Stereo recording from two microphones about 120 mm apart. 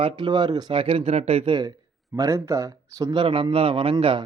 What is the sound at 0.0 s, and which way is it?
Speech, 40° right (ahead or behind).